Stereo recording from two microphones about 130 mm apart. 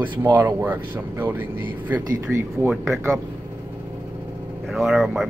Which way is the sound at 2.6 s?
Centre (ahead or behind).